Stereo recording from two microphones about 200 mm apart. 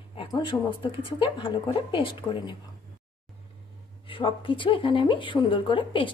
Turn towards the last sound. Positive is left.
turn(degrees=25)  # may be behind; listen again after turning